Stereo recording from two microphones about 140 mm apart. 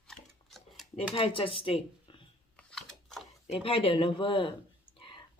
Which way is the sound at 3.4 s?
45° left (ahead or behind).